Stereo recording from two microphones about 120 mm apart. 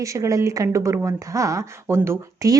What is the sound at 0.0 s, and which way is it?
Speech, 25° right (ahead or behind).